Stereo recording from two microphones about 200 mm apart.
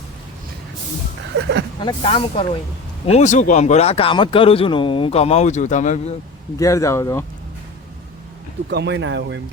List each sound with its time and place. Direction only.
1.8 s speech: 25° left (ahead or behind)
6.6 s speech: 15° left (ahead or behind)
8.7 s speech: 60° right (ahead or behind)